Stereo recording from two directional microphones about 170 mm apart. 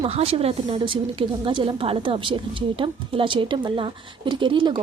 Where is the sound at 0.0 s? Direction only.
35° right (ahead or behind).